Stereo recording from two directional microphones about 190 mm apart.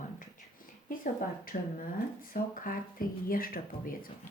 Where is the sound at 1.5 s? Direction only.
45° left (ahead or behind).